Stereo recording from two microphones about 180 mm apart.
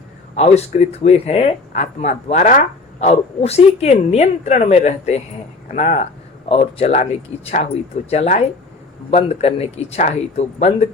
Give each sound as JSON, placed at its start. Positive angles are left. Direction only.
{"t": 0.3, "sound": "speech", "side_deg": 40}